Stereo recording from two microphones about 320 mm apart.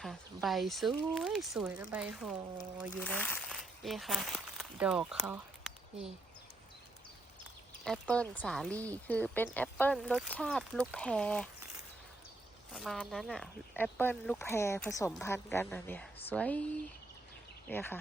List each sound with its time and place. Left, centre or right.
0.0 s speech: centre
7.9 s speech: centre
12.7 s speech: centre
17.7 s speech: centre